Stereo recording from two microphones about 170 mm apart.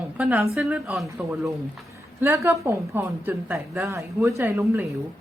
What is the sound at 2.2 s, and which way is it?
A woman's voice, 15° right (ahead or behind).